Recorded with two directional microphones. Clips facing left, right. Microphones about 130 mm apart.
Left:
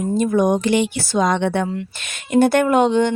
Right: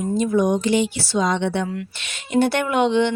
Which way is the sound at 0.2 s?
50° left (ahead or behind).